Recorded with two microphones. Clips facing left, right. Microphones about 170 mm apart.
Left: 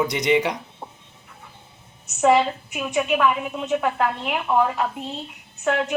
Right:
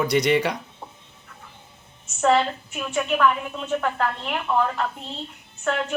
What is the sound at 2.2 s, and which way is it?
A woman's voice, 15° left (ahead or behind).